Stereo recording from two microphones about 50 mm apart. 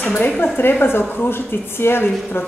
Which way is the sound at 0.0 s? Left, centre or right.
Left.